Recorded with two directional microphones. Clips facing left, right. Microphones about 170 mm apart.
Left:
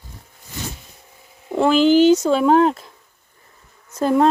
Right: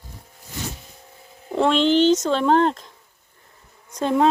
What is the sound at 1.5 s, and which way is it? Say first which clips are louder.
Speech: left 4 dB; 5° left (ahead or behind).